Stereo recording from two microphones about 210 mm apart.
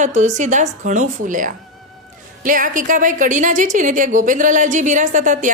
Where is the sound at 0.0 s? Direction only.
35° right (ahead or behind).